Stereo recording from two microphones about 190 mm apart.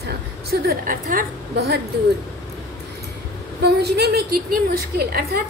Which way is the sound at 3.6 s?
60° right (ahead or behind).